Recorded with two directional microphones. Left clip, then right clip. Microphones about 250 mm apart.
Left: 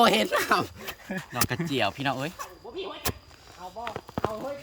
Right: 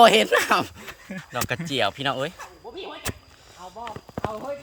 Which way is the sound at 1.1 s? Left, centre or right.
Centre.